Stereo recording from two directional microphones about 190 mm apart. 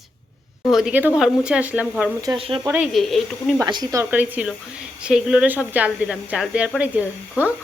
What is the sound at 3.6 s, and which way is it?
A woman's voice, 20° right (ahead or behind).